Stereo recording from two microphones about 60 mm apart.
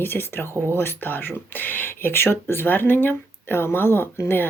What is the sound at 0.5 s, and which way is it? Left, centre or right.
Speech, right.